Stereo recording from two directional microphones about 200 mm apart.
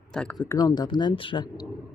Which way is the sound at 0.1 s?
5° left (ahead or behind).